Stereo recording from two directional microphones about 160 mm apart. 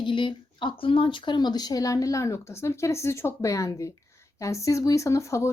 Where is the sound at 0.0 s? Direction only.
30° left (ahead or behind).